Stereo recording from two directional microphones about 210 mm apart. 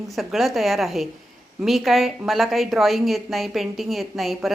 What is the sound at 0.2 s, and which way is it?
A woman's voice, centre (ahead or behind).